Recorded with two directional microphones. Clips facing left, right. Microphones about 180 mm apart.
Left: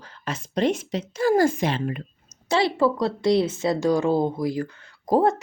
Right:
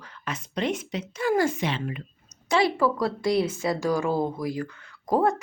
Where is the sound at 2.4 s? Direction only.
30° left (ahead or behind).